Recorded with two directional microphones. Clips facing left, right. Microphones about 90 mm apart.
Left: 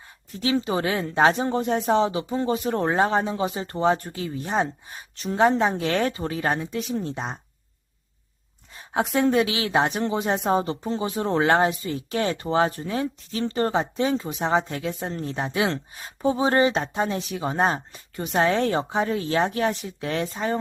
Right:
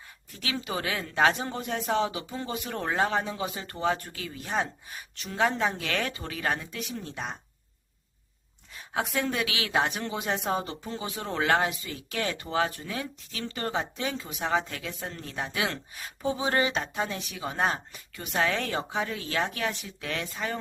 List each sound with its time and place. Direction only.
0.3 s speech: 30° left (ahead or behind)
8.7 s a sound: 30° left (ahead or behind)
9.1 s speech: 30° left (ahead or behind)